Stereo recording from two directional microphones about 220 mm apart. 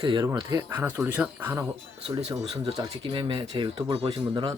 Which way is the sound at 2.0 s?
25° right (ahead or behind).